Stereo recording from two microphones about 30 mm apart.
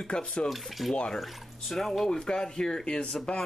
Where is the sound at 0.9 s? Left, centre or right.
Left.